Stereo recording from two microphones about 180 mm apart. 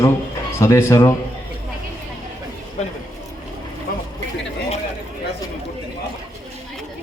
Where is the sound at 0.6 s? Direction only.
15° left (ahead or behind).